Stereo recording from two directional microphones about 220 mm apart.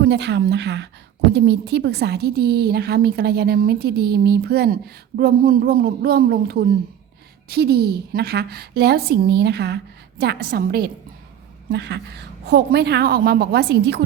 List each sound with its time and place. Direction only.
0.0 s speech: 50° right (ahead or behind)